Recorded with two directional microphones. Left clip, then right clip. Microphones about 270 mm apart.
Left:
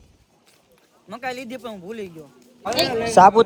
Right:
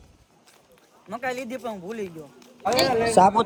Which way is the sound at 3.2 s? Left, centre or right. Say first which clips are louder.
Left 6 dB; left.